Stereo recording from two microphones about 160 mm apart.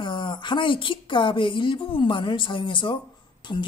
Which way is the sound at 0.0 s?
30° left (ahead or behind).